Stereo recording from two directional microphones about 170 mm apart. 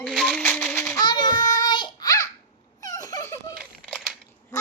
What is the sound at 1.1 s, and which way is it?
Child singing, 25° left (ahead or behind).